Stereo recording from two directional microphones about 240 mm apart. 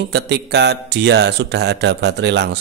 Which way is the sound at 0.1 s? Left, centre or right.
Right.